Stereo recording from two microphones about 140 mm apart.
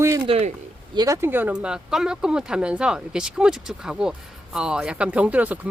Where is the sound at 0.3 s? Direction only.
45° right (ahead or behind).